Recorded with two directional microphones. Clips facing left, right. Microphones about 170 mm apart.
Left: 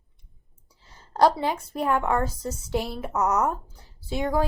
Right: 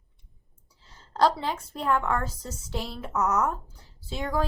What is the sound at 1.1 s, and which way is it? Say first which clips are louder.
Speech: left 3 dB; 15° left (ahead or behind).